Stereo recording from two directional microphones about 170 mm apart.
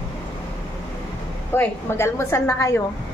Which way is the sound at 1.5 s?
15° left (ahead or behind).